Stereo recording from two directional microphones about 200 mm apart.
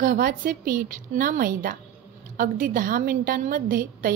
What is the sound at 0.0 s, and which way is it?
A woman's voice, 45° right (ahead or behind).